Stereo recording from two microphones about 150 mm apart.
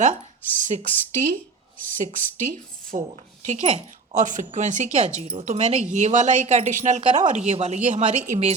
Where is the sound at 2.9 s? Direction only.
55° right (ahead or behind).